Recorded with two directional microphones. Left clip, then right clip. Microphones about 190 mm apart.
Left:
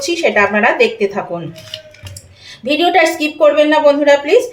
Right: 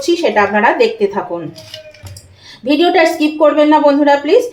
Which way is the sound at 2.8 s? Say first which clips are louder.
Right 1 dB; 15° right (ahead or behind).